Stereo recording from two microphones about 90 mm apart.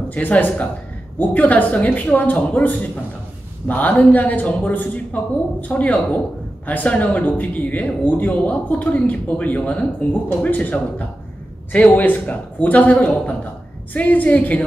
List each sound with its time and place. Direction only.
0.1 s speech: 20° left (ahead or behind)